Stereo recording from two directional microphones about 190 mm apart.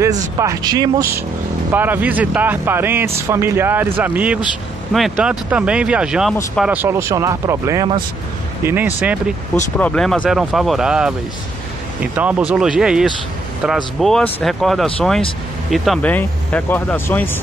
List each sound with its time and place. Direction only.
0.0 s speech: 15° right (ahead or behind)
9.8 s speech: 5° left (ahead or behind)